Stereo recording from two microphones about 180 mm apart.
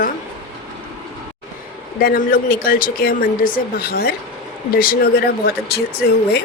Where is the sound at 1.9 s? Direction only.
55° left (ahead or behind).